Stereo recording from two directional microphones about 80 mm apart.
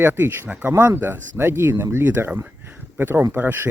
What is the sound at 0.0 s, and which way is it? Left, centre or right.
Speech, right.